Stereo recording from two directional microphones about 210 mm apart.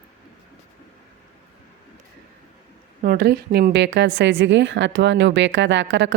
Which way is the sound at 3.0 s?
45° right (ahead or behind).